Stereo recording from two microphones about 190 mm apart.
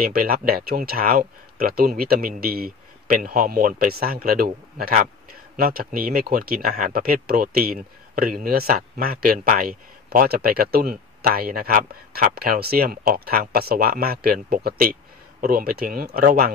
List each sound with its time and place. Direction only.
0.0 s speech: 50° right (ahead or behind)